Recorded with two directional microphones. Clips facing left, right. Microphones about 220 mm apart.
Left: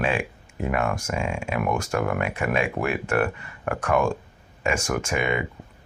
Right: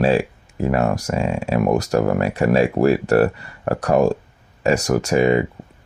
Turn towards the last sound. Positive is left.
turn(degrees=-35)  # may be behind; listen again after turning